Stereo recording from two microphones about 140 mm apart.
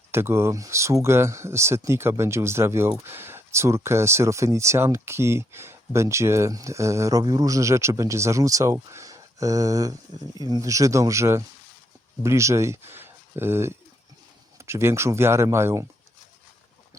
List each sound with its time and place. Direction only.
0.1 s speech: 15° right (ahead or behind)